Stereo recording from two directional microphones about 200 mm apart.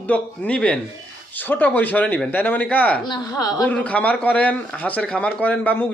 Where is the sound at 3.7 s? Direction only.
5° left (ahead or behind).